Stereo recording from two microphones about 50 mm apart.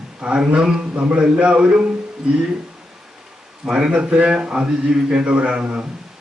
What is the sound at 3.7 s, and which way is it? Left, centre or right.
A man's voice, centre.